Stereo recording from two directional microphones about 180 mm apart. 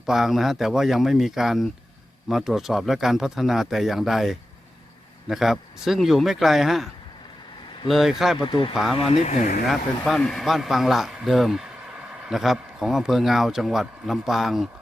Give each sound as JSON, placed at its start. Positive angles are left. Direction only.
{"t": 0.0, "sound": "speech", "side_deg": 0}
{"t": 8.4, "sound": "speech", "side_deg": 25}
{"t": 8.7, "sound": "speech", "side_deg": 0}
{"t": 9.2, "sound": "speech", "side_deg": 40}
{"t": 9.6, "sound": "speech", "side_deg": 0}